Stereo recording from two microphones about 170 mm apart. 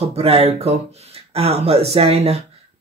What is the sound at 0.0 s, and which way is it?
Speech, 35° right (ahead or behind).